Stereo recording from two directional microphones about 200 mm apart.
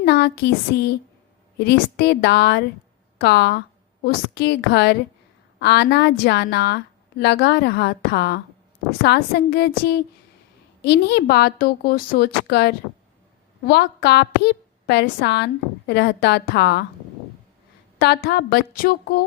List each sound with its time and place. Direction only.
0.0 s a woman's voice: 55° left (ahead or behind)
18.0 s speech: 55° left (ahead or behind)